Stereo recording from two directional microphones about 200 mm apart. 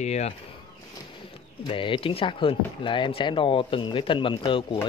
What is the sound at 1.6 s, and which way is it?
Speech, 25° left (ahead or behind).